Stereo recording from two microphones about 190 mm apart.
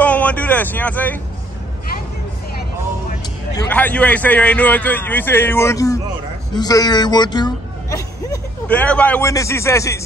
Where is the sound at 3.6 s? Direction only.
10° left (ahead or behind).